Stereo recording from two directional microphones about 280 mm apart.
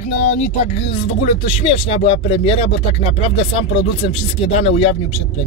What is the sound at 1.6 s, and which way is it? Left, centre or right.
Speech, left.